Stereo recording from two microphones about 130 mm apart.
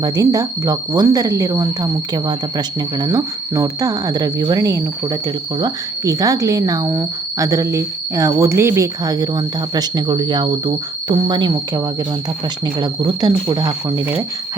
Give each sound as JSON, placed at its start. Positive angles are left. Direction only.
{"t": 0.0, "sound": "speech", "side_deg": -30}
{"t": 12.8, "sound": "speech", "side_deg": -35}